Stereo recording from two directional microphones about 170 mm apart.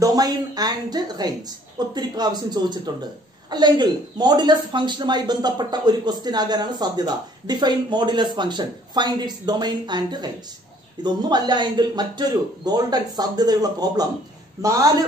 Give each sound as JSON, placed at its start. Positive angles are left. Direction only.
{"t": 0.0, "sound": "a woman's voice", "side_deg": -20}